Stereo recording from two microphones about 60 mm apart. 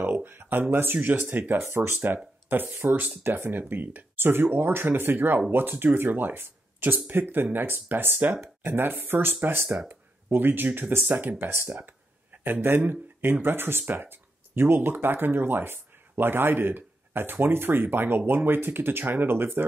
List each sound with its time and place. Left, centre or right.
0.0 s speech: right
1.7 s speech: right